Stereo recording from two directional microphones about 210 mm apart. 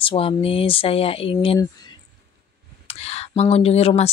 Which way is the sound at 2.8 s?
30° left (ahead or behind).